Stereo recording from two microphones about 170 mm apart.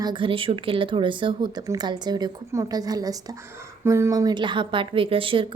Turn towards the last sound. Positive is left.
turn(degrees=-30)  # may be behind; listen again after turning